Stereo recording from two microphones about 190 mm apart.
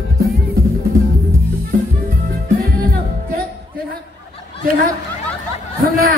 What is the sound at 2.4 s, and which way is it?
Music, 50° right (ahead or behind).